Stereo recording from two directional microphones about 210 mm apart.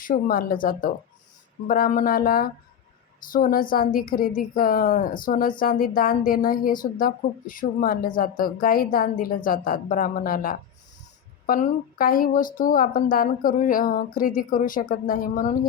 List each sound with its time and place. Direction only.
0.0 s speech: 40° left (ahead or behind)